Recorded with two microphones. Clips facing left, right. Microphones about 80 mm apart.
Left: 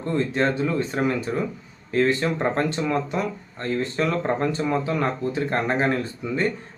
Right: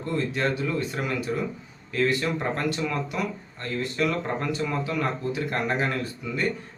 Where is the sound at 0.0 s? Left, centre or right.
Left.